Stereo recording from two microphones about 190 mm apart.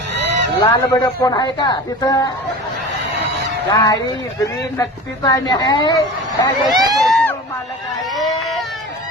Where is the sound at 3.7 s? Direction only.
20° left (ahead or behind).